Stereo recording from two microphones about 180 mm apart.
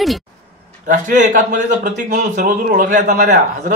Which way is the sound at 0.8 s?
45° right (ahead or behind).